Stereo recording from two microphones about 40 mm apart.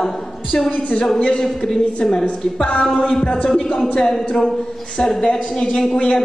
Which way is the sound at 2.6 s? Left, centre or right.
Left.